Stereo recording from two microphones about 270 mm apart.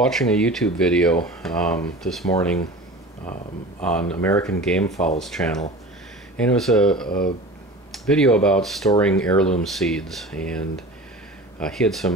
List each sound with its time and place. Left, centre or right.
0.0 s speech: centre
3.8 s speech: centre
7.1 s speech: left
7.9 s speech: centre
11.6 s speech: centre